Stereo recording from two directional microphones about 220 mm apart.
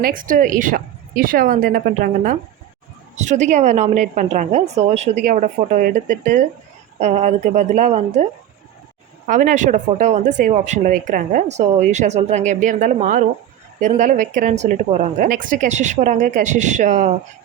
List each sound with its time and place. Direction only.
0.0 s speech: 40° right (ahead or behind)
9.2 s speech: 35° right (ahead or behind)